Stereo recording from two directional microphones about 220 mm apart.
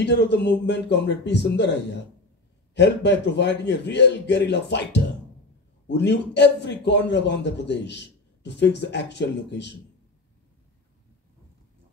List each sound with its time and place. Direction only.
0.0 s a man's voice: 50° left (ahead or behind)